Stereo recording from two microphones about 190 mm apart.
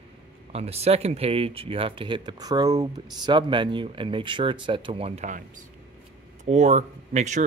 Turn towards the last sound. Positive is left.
turn(degrees=-40)  # may be behind; listen again after turning